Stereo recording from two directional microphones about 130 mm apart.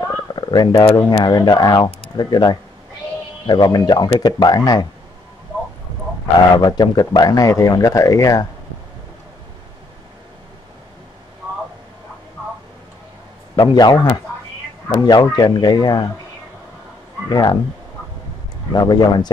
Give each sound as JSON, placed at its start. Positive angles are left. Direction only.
{"t": 0.3, "sound": "purr", "side_deg": 35}
{"t": 0.9, "sound": "speech", "side_deg": 30}
{"t": 6.5, "sound": "speech", "side_deg": 35}
{"t": 13.6, "sound": "speech", "side_deg": 35}
{"t": 17.3, "sound": "speech", "side_deg": 30}
{"t": 18.7, "sound": "speech", "side_deg": 30}